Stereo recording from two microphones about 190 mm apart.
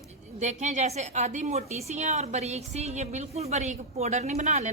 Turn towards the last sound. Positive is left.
turn(degrees=-40)  # may be behind; listen again after turning